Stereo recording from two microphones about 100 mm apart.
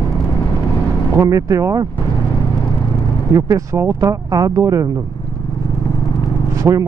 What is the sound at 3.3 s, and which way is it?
Speech, 35° right (ahead or behind).